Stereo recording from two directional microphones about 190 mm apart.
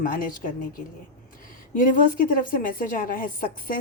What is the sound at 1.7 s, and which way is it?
A woman's voice, 45° left (ahead or behind).